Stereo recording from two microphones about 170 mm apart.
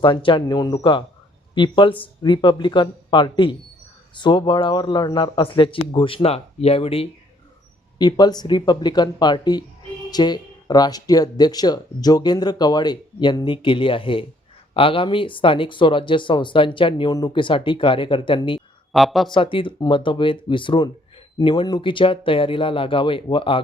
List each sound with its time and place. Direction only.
0.0 s speech: 30° left (ahead or behind)
18.9 s speech: centre (ahead or behind)
19.3 s speech: 30° left (ahead or behind)